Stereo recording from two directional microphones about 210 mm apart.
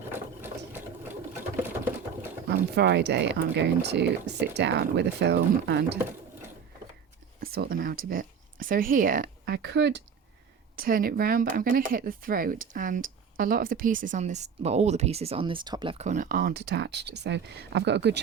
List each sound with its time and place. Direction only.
0.4 s sewing machine: 10° right (ahead or behind)
2.5 s speech: 55° right (ahead or behind)
7.4 s speech: 45° right (ahead or behind)
10.8 s speech: 45° right (ahead or behind); by 16.0 s 25° right (ahead or behind)
16.0 s speech: 40° right (ahead or behind); by 18.2 s 55° right (ahead or behind)